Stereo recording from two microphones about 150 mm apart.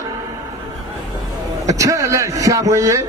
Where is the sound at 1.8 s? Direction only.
20° right (ahead or behind).